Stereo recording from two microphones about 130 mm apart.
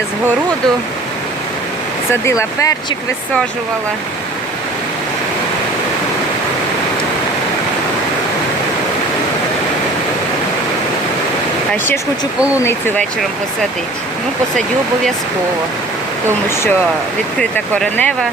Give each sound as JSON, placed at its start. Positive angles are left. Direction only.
{"t": 2.2, "sound": "speech", "side_deg": 25}
{"t": 17.7, "sound": "speech", "side_deg": 5}